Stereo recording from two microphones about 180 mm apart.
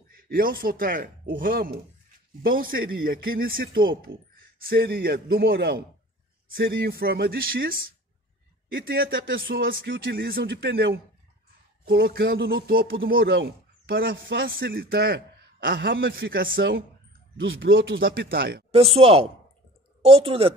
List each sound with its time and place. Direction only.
0.3 s a man's voice: 55° right (ahead or behind)
4.1 s speech: 90° right
4.6 s a man's voice: 55° right (ahead or behind)
8.7 s a man's voice: 55° right (ahead or behind)
11.8 s a man's voice: 60° right (ahead or behind)
17.4 s speech: 90° right; by 18.6 s 60° right (ahead or behind)
18.7 s speech: 35° right (ahead or behind)